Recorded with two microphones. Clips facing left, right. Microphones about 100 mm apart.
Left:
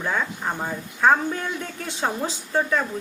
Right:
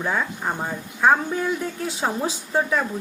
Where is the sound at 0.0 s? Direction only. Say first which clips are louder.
Right 1 dB; 5° right (ahead or behind).